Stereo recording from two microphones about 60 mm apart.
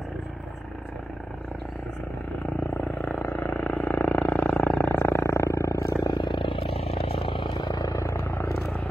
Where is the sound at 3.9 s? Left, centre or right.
Left.